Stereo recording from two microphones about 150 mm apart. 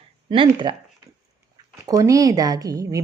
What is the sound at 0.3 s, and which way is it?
Speech, 30° right (ahead or behind).